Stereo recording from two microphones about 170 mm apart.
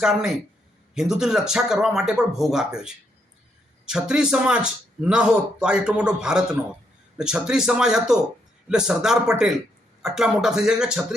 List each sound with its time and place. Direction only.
0.0 s a man's voice: 5° right (ahead or behind)